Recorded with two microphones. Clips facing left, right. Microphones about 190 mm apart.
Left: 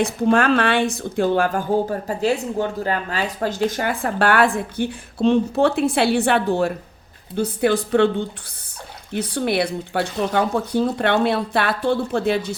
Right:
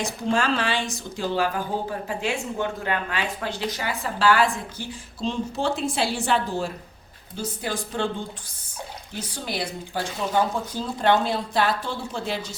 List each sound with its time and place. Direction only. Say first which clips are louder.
0.0 s speech: left 7 dB; 60° left (ahead or behind)
9.1 s speech: left 10 dB; 60° left (ahead or behind)